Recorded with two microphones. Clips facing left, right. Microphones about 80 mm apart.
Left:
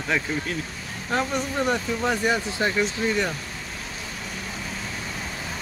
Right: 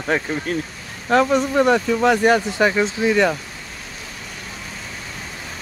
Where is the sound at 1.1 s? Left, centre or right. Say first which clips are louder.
Right 9 dB; right.